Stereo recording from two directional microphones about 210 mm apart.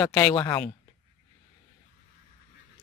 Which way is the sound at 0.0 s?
5° left (ahead or behind).